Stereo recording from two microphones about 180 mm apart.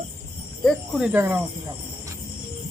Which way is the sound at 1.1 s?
10° right (ahead or behind).